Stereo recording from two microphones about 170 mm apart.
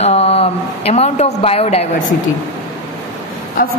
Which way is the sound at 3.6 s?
55° left (ahead or behind).